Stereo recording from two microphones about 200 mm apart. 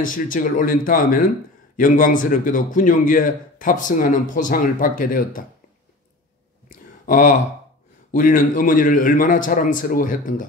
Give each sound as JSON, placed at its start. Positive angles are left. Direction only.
{"t": 0.0, "sound": "a man's voice", "side_deg": 40}
{"t": 6.7, "sound": "a sound", "side_deg": 40}
{"t": 8.1, "sound": "a man's voice", "side_deg": 40}